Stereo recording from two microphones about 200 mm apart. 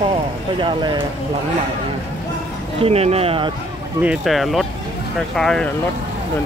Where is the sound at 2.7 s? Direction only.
30° right (ahead or behind).